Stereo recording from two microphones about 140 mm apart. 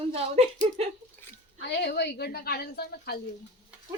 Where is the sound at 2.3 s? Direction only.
90° left.